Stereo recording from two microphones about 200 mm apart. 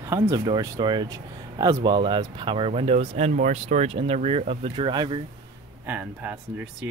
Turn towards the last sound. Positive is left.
turn(degrees=-10)  # may be behind; listen again after turning